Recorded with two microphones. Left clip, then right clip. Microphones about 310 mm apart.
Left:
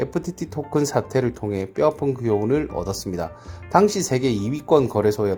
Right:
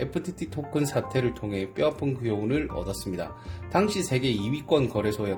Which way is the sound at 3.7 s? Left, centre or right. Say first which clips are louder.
Left 7 dB; left.